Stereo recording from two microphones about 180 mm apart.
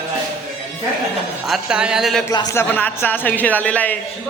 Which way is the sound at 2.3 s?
20° left (ahead or behind).